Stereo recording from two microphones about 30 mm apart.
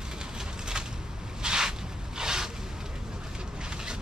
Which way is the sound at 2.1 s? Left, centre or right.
Centre.